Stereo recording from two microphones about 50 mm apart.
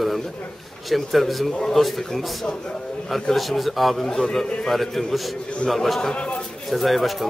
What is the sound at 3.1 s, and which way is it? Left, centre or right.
Speech, centre.